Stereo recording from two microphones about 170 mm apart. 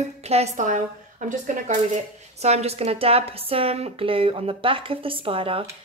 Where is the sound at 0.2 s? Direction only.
40° right (ahead or behind).